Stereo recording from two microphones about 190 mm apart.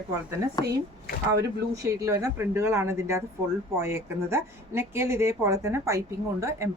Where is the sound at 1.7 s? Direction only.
15° right (ahead or behind).